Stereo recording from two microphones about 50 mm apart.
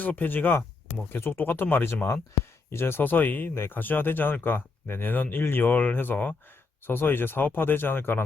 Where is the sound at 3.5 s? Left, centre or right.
Left.